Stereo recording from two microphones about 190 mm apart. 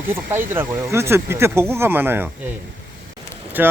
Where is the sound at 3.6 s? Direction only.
10° right (ahead or behind).